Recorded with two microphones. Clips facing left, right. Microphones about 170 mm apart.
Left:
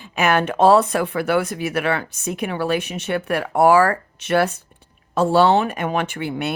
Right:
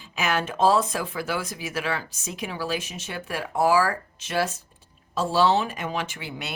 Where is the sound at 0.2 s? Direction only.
60° left (ahead or behind).